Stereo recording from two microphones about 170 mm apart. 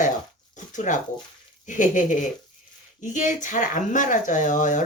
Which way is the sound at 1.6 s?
50° left (ahead or behind).